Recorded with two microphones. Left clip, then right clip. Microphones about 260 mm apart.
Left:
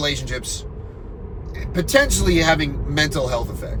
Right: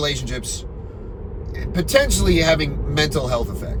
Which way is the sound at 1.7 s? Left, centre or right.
Centre.